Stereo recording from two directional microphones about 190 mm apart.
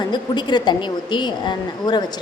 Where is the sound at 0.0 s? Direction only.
25° left (ahead or behind).